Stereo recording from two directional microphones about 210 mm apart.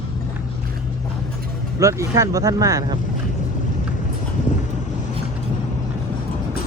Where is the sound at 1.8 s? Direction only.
15° right (ahead or behind).